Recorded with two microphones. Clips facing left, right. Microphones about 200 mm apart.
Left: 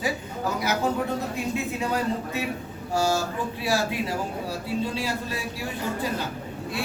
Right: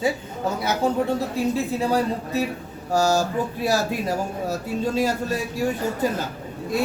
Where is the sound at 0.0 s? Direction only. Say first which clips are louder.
Right 4 dB; 25° right (ahead or behind).